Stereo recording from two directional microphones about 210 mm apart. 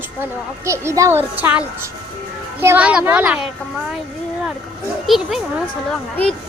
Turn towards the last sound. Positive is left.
turn(degrees=5)  # may be behind; listen again after turning